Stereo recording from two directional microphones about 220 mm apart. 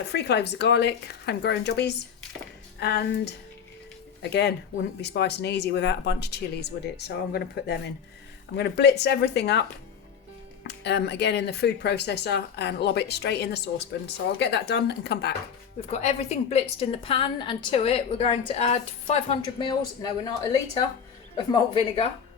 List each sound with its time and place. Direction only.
0.1 s speech: 50° left (ahead or behind)
15.9 s a woman's voice: 30° left (ahead or behind)